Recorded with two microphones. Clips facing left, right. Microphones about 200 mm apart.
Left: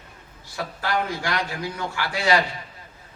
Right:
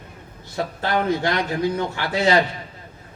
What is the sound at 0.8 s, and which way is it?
A man's voice, 25° right (ahead or behind).